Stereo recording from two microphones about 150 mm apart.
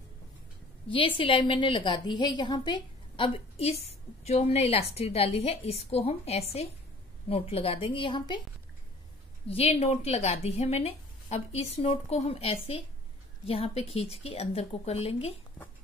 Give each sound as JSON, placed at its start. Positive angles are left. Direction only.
{"t": 0.8, "sound": "a woman's voice", "side_deg": 35}
{"t": 9.5, "sound": "speech", "side_deg": 45}